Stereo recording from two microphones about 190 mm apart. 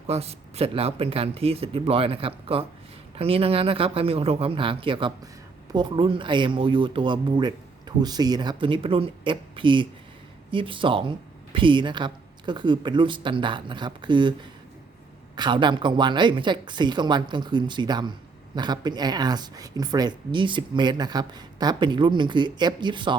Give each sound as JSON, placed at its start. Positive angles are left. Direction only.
{"t": 0.1, "sound": "speech", "side_deg": -35}
{"t": 15.4, "sound": "speech", "side_deg": -25}